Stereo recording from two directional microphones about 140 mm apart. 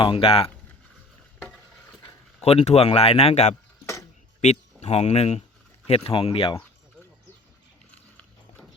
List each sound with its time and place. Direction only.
0.0 s speech: 40° left (ahead or behind)
2.4 s speech: 45° left (ahead or behind)